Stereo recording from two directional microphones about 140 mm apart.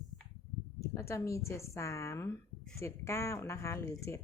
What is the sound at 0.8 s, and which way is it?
Speech, 20° left (ahead or behind).